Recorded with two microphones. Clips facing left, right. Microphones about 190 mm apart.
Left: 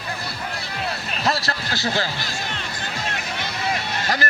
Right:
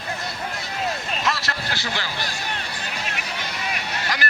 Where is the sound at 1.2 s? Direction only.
35° left (ahead or behind).